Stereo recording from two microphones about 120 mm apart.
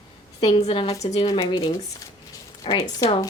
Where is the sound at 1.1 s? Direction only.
40° left (ahead or behind).